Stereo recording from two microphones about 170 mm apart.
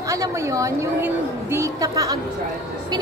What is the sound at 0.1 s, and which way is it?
A woman's voice, 20° right (ahead or behind).